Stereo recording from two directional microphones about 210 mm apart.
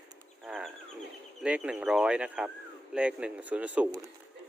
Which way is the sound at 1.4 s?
5° right (ahead or behind).